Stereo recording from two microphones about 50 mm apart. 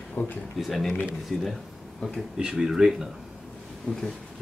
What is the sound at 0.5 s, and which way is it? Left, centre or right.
Speech, centre.